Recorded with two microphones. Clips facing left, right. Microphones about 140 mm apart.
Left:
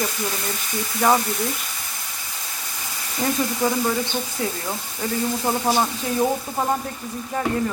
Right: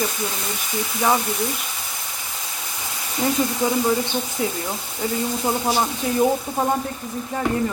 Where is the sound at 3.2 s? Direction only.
15° right (ahead or behind).